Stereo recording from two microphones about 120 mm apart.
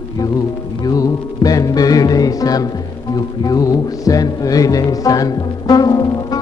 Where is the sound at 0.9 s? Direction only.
30° left (ahead or behind).